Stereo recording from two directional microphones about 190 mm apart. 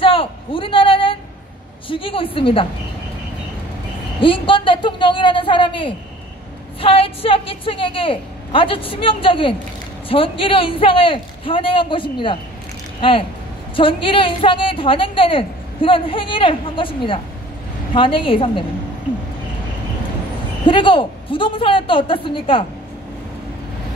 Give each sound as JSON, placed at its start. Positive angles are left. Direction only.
{"t": 0.0, "sound": "a sound", "side_deg": 30}
{"t": 1.9, "sound": "a woman's voice", "side_deg": 25}
{"t": 4.2, "sound": "a woman's voice", "side_deg": 25}
{"t": 13.7, "sound": "a woman's voice", "side_deg": 25}
{"t": 20.6, "sound": "a woman's voice", "side_deg": 25}